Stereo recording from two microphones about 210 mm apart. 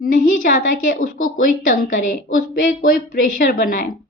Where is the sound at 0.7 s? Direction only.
40° left (ahead or behind).